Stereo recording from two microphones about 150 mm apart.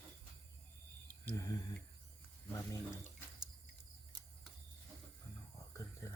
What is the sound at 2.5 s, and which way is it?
Speech, 20° left (ahead or behind).